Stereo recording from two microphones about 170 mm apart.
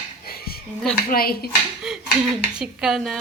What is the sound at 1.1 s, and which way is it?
Speech, 60° left (ahead or behind).